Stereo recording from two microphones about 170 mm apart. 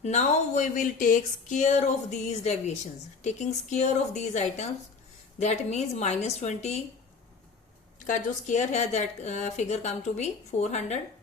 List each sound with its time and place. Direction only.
0.0 s a woman's voice: 45° left (ahead or behind)
8.0 s a woman's voice: 45° left (ahead or behind)